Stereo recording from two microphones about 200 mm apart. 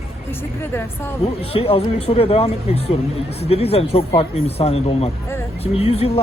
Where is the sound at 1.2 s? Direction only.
30° left (ahead or behind).